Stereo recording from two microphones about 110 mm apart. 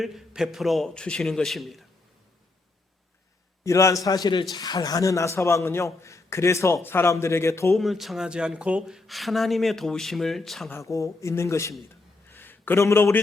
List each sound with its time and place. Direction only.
0.0 s speech: 5° right (ahead or behind)
3.6 s a man's voice: 25° left (ahead or behind)
7.7 s speech: centre (ahead or behind)
10.7 s a man's voice: 25° left (ahead or behind)
12.3 s a sound: 20° left (ahead or behind)